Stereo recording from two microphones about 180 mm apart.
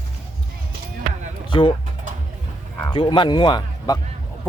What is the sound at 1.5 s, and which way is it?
Speech, 25° left (ahead or behind).